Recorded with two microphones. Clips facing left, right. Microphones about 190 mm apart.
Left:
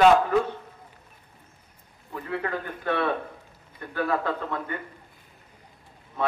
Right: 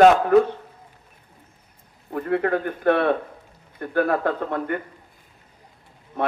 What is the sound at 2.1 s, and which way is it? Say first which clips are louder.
A man's voice: right 8 dB; 55° right (ahead or behind).